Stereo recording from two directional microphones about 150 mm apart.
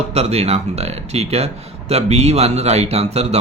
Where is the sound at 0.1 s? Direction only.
45° right (ahead or behind).